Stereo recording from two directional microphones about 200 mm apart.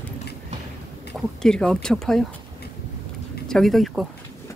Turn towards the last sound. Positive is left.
turn(degrees=0)  # may be behind; listen again after turning